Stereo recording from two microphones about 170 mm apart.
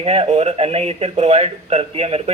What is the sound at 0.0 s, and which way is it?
Speech, 35° right (ahead or behind).